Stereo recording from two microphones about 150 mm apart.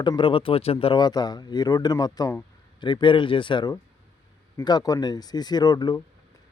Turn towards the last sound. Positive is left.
turn(degrees=30)  # may be behind; listen again after turning